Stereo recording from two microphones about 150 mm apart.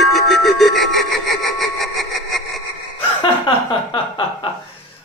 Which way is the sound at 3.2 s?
35° left (ahead or behind).